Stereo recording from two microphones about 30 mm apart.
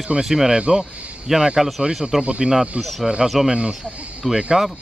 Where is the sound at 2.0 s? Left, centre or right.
Centre.